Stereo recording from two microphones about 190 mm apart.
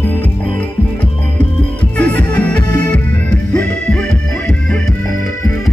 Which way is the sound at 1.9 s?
5° left (ahead or behind).